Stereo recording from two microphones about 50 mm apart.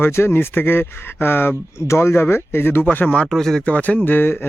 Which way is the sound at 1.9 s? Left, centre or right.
Left.